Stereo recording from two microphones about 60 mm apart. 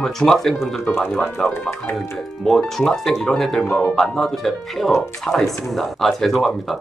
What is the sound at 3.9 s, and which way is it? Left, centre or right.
Speech, centre.